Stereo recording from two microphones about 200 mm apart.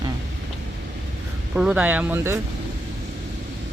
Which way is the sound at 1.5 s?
5° right (ahead or behind).